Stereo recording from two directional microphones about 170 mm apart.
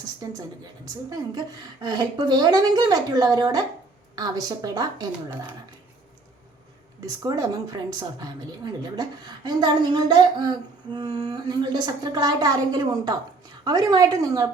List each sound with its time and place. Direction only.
0.2 s a woman's voice: 20° right (ahead or behind)
1.8 s a woman's voice: 25° right (ahead or behind)
7.2 s a woman's voice: 20° right (ahead or behind)